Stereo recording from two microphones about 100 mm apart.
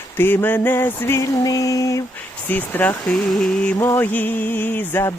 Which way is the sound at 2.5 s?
20° left (ahead or behind).